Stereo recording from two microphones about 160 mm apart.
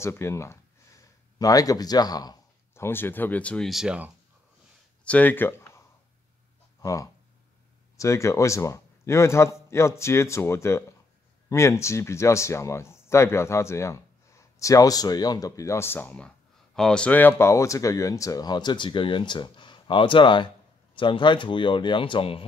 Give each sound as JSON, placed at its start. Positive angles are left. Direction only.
{"t": 0.0, "sound": "a man's voice", "side_deg": 15}
{"t": 5.0, "sound": "a man's voice", "side_deg": 10}